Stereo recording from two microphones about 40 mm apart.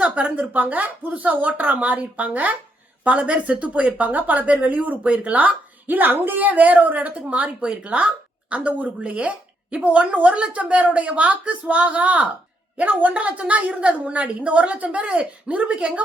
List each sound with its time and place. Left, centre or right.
0.3 s a woman's voice: right